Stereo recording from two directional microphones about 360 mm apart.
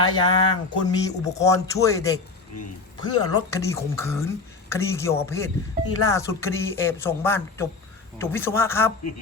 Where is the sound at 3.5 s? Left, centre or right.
Centre.